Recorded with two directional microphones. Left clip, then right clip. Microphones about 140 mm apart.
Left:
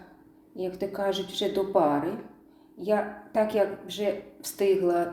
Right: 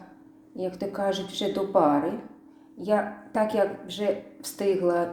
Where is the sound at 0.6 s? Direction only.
15° right (ahead or behind).